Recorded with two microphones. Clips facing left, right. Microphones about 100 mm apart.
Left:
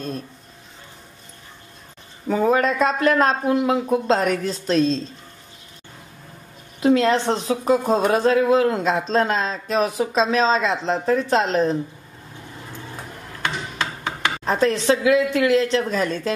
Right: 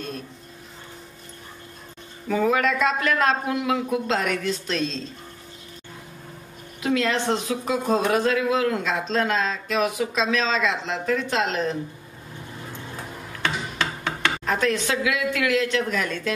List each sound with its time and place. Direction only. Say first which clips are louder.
2.2 s speech: left 3 dB; 35° left (ahead or behind)
6.8 s speech: left 6 dB; 35° left (ahead or behind)
14.4 s speech: left 5 dB; 35° left (ahead or behind)